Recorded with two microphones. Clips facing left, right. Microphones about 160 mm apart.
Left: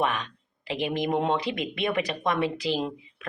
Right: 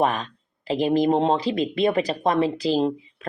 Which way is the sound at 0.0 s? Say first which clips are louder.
Right 5 dB; 35° right (ahead or behind).